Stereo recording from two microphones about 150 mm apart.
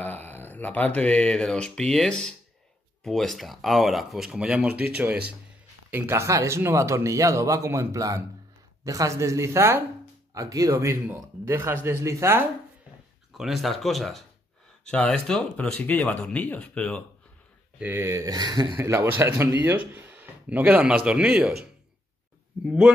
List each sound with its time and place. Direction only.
0.0 s speech: 10° left (ahead or behind); by 12.4 s 20° right (ahead or behind)
13.3 s speech: centre (ahead or behind)
17.7 s speech: 15° right (ahead or behind)
18.8 s speech: 15° right (ahead or behind)
22.7 s speech: 5° right (ahead or behind)